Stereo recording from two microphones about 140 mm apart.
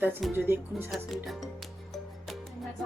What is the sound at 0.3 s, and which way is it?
Speech, 15° right (ahead or behind).